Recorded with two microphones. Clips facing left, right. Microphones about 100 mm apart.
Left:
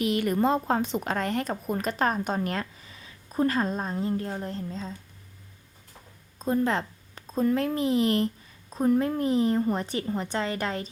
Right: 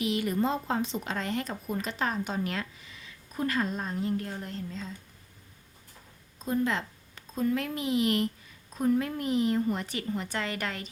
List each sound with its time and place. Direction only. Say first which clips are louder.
0.0 s a woman's voice: left 4 dB; 55° left (ahead or behind); by 4.9 s 35° left (ahead or behind)
6.4 s a woman's voice: left 4 dB; 40° left (ahead or behind)